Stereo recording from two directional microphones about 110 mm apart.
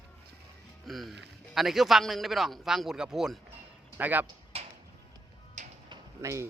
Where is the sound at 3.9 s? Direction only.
15° right (ahead or behind).